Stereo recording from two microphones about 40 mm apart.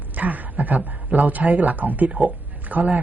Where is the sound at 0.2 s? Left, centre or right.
Right.